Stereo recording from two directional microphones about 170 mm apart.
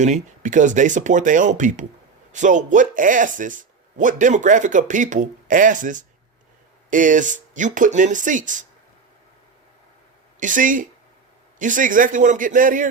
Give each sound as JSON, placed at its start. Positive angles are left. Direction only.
{"t": 0.0, "sound": "speech", "side_deg": -45}
{"t": 10.4, "sound": "speech", "side_deg": -50}